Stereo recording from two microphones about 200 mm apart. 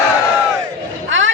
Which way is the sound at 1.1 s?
70° right (ahead or behind).